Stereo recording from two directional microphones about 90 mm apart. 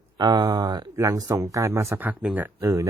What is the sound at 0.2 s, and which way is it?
Speech, 50° right (ahead or behind).